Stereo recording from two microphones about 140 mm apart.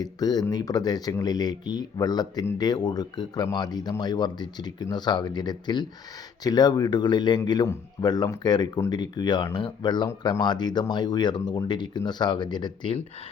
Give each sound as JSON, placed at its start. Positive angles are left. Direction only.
{"t": 0.0, "sound": "speech", "side_deg": 25}